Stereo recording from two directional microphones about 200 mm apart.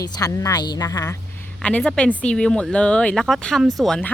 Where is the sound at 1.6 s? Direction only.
5° left (ahead or behind).